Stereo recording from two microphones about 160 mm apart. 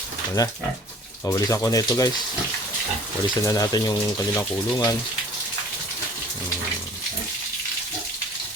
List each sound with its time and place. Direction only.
0.4 s speech: 25° left (ahead or behind)
3.2 s speech: 20° left (ahead or behind)